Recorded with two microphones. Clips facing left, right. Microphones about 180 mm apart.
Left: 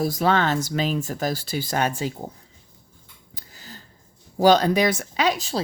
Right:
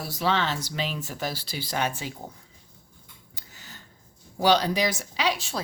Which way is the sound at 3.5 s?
35° left (ahead or behind).